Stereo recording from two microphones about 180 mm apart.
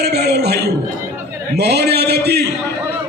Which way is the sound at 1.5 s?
65° right (ahead or behind).